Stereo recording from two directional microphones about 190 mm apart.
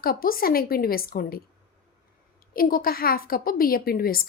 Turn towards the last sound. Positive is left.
turn(degrees=50)  # may be behind; listen again after turning